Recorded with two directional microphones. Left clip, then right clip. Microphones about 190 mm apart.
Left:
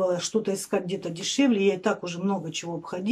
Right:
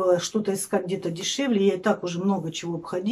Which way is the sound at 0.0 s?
5° left (ahead or behind).